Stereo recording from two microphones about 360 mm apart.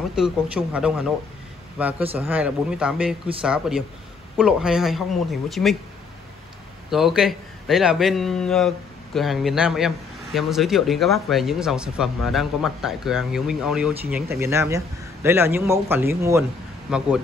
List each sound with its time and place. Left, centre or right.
0.1 s a man's voice: centre
6.9 s a man's voice: centre